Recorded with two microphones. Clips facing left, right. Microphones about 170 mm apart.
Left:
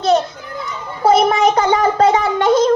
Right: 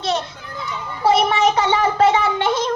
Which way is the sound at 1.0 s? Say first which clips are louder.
Left 4 dB; 40° left (ahead or behind).